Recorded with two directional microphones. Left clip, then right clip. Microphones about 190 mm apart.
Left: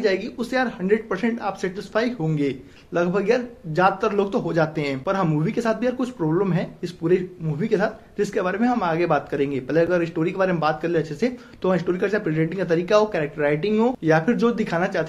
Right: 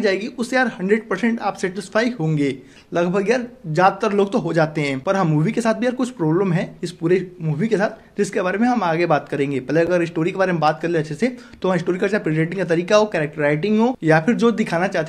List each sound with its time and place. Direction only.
0.0 s speech: 40° right (ahead or behind)